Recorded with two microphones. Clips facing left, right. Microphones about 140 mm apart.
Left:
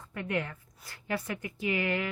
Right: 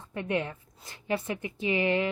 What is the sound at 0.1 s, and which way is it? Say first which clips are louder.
Speech: right 3 dB; 25° right (ahead or behind).